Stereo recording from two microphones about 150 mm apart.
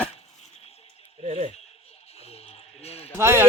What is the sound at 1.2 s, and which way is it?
Speech, 50° right (ahead or behind).